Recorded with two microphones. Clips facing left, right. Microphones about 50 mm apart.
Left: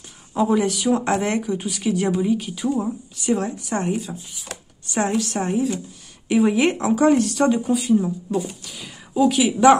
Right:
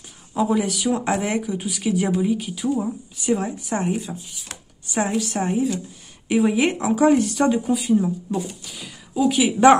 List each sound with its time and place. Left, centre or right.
0.4 s speech: centre
9.6 s a woman's voice: right